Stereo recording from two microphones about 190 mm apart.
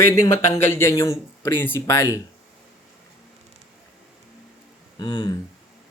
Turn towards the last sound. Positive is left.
turn(degrees=20)  # may be behind; listen again after turning